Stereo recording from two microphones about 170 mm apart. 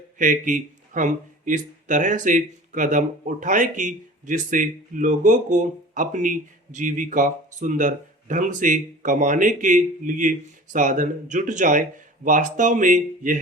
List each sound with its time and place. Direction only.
0.2 s speech: 50° right (ahead or behind)